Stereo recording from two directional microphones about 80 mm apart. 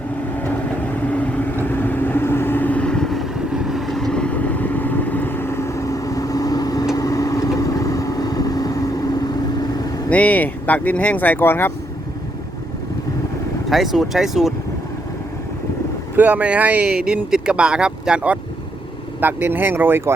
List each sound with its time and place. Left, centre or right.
0.3 s vehicle: left
10.1 s speech: centre
13.7 s speech: centre
16.1 s speech: right
19.2 s speech: right